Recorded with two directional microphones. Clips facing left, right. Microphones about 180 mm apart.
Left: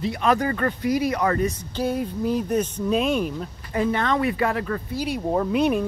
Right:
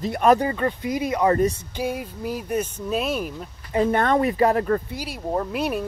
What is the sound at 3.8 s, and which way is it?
Speech, 50° right (ahead or behind).